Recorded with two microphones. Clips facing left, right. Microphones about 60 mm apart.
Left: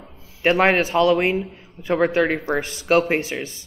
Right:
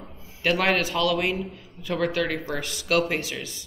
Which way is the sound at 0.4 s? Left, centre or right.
Left.